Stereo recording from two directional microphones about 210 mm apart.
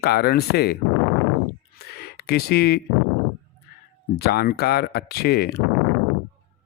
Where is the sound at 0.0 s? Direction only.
50° left (ahead or behind).